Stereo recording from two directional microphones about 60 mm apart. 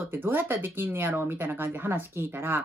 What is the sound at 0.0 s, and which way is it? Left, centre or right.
Speech, right.